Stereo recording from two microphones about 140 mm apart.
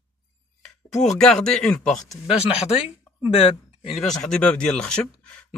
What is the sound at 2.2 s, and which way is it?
Speech, 45° left (ahead or behind).